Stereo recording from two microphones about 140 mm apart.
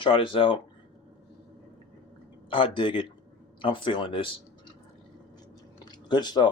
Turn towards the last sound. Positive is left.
turn(degrees=30)  # may be behind; listen again after turning